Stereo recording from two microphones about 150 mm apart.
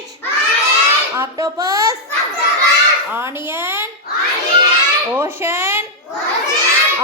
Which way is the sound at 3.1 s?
15° right (ahead or behind).